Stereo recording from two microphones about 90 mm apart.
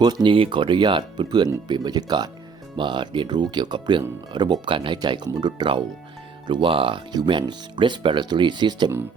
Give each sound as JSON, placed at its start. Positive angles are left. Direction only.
{"t": 0.0, "sound": "speech", "side_deg": -55}
{"t": 0.3, "sound": "speech", "side_deg": -80}
{"t": 2.7, "sound": "speech", "side_deg": -65}
{"t": 4.9, "sound": "speech", "side_deg": -55}
{"t": 6.5, "sound": "speech", "side_deg": -75}
{"t": 7.1, "sound": "speech", "side_deg": -60}